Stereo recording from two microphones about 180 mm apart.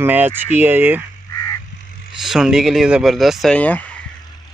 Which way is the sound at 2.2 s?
Centre (ahead or behind).